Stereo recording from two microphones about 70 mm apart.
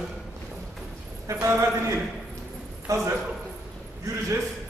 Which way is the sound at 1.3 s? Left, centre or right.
Right.